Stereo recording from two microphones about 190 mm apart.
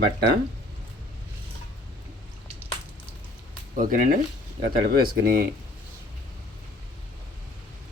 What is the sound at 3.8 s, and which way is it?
Speech, 45° right (ahead or behind).